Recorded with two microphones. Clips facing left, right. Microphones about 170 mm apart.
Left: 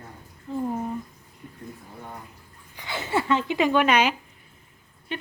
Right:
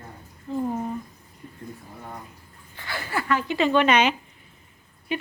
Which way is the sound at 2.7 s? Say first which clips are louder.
Left 3 dB; 20° left (ahead or behind).